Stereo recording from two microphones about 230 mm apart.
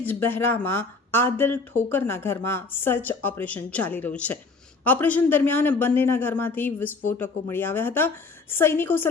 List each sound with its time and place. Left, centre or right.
0.0 s a woman's voice: centre